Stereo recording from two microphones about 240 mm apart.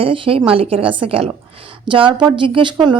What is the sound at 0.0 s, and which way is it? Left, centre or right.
Speech, right.